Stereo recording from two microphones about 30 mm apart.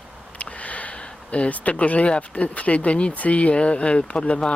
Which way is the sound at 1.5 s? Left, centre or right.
Left.